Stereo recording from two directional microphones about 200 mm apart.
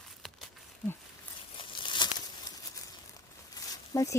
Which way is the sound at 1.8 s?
25° left (ahead or behind).